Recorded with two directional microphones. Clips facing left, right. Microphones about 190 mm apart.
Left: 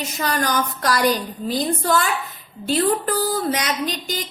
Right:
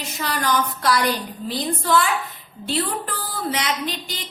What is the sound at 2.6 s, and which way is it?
A woman's voice, 40° left (ahead or behind).